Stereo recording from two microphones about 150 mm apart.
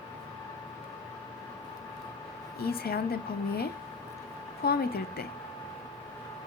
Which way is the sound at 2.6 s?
90° left.